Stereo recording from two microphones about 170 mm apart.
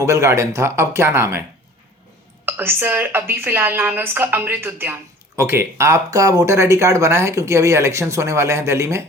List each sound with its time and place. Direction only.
0.0 s speech: 15° right (ahead or behind)
2.5 s speech: 15° right (ahead or behind)